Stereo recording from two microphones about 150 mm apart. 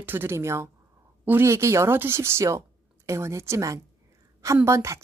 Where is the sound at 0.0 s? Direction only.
15° right (ahead or behind).